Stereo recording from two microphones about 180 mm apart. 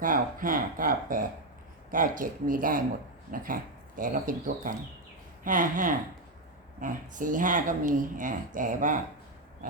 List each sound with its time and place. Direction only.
0.0 s speech: 50° right (ahead or behind)